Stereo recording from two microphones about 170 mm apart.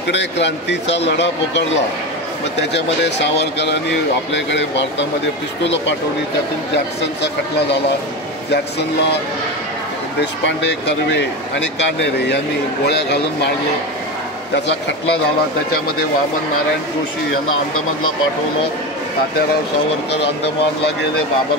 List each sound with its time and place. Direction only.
0.1 s speech: 90° left
2.7 s speech: 90° left
10.4 s speech: 90° left
12.8 s speech: 75° left (ahead or behind)
14.5 s speech: 90° left